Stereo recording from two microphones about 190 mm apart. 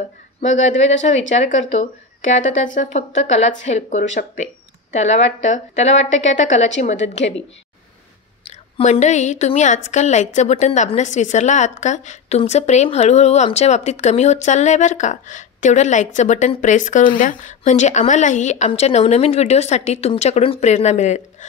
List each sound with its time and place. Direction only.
0.4 s a woman's voice: 35° left (ahead or behind)
8.5 s a woman's voice: 35° left (ahead or behind)